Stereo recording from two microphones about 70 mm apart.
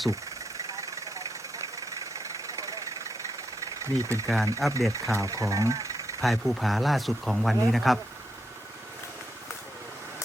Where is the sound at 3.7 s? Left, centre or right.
Right.